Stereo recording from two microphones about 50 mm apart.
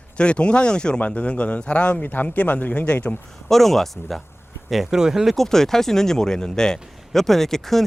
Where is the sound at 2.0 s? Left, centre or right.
Left.